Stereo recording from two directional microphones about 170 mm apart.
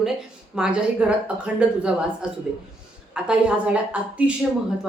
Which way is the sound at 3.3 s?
5° right (ahead or behind).